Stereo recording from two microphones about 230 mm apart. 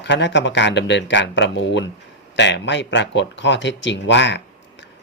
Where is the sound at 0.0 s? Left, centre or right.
Left.